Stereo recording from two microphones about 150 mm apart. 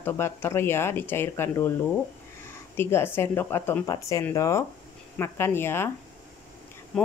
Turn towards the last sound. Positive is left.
turn(degrees=5)  # may be behind; listen again after turning